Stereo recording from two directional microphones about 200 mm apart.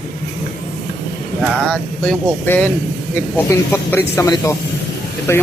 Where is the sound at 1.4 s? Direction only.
Centre (ahead or behind).